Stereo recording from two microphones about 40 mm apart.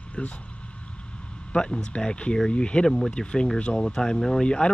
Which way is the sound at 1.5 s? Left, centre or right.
Left.